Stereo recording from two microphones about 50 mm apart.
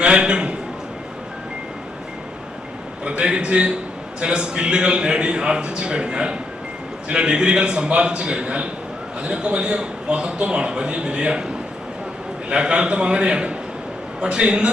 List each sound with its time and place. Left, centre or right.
0.0 s a man's voice: centre
3.0 s a man's voice: centre
12.5 s a man's voice: centre